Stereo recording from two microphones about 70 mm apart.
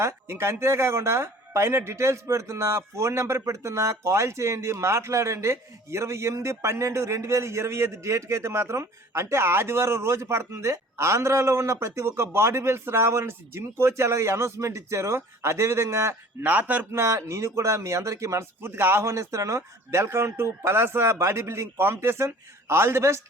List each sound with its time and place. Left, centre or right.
0.0 s speech: right
16.4 s speech: right
16.9 s speech: right